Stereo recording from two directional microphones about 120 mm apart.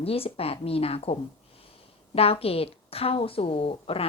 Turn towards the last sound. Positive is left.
turn(degrees=50)  # may be behind; listen again after turning